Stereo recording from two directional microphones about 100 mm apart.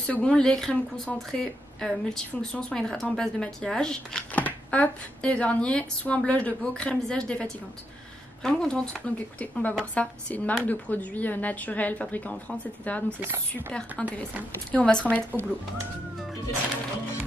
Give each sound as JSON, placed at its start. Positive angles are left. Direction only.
{"t": 0.0, "sound": "speech", "side_deg": 10}